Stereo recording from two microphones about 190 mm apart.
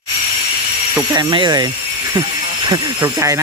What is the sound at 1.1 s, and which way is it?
Speech, 20° right (ahead or behind).